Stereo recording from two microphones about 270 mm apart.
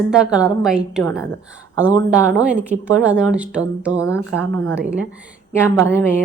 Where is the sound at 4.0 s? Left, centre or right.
Centre.